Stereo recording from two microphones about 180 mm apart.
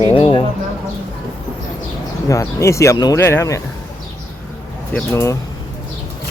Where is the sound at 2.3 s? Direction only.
15° left (ahead or behind).